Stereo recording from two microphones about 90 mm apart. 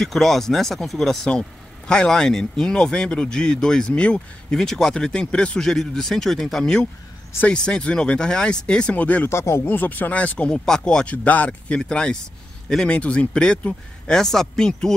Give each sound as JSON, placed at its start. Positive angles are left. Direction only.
{"t": 0.0, "sound": "speech", "side_deg": 5}
{"t": 9.3, "sound": "speech", "side_deg": 30}